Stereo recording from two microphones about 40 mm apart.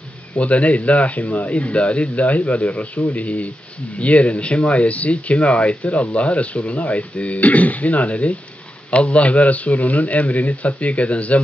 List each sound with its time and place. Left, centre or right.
0.4 s speech: left